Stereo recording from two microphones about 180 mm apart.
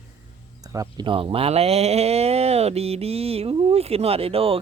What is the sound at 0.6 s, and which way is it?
Speech, 20° right (ahead or behind).